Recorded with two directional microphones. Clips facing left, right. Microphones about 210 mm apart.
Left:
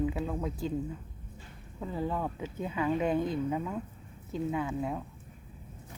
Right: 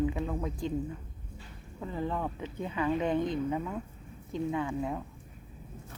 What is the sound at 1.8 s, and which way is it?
Speech, 5° left (ahead or behind).